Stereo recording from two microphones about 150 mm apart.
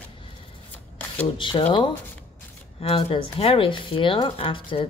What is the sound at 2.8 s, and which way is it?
Speech, 40° left (ahead or behind).